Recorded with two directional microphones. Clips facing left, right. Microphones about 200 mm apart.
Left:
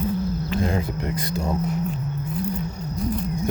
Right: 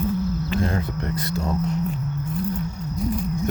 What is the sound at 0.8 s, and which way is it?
Speech, 15° left (ahead or behind).